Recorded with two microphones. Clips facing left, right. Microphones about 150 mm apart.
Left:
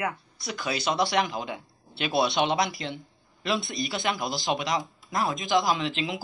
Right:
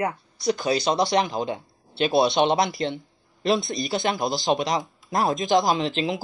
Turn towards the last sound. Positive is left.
turn(degrees=-35)  # may be behind; listen again after turning